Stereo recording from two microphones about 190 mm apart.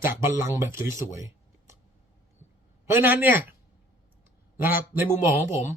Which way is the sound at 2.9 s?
10° right (ahead or behind).